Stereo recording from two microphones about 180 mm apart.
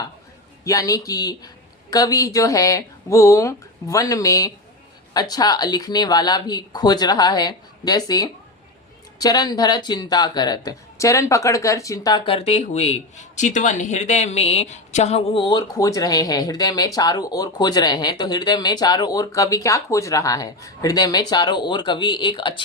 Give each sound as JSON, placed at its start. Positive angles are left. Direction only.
{"t": 0.6, "sound": "speech", "side_deg": 20}